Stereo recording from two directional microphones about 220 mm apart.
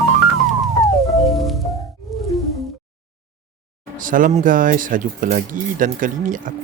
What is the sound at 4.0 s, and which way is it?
Speech, 35° right (ahead or behind).